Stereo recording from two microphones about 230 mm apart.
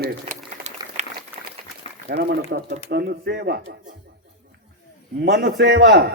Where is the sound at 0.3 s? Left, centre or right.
Right.